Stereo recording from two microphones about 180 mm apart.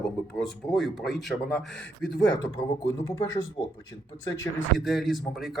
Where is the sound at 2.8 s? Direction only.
25° left (ahead or behind).